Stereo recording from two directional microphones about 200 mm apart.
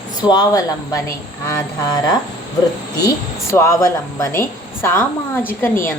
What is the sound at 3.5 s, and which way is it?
A woman's voice, 15° left (ahead or behind).